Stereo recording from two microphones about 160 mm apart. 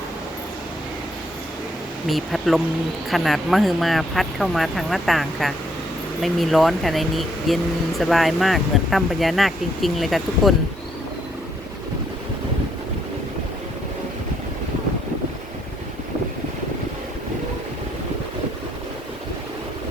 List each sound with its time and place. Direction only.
2.0 s speech: centre (ahead or behind)